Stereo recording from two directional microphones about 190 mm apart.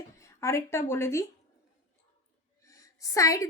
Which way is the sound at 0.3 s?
15° left (ahead or behind).